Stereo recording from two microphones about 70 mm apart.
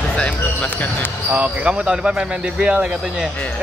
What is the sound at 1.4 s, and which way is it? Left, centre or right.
Speech, centre.